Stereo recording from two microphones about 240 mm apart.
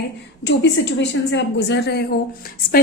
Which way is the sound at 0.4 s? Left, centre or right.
Left.